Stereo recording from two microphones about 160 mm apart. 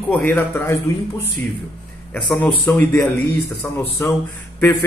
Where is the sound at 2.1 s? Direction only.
10° left (ahead or behind).